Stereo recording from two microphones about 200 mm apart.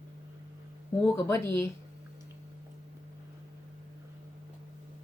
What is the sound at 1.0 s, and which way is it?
Speech, 15° left (ahead or behind).